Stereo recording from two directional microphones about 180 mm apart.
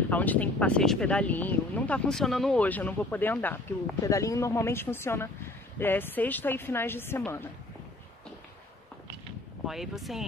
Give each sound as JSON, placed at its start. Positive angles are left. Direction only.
{"t": 0.1, "sound": "speech", "side_deg": 10}
{"t": 9.7, "sound": "speech", "side_deg": 0}